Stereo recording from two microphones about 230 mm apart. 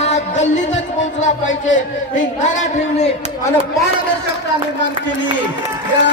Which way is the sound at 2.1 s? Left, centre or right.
Left.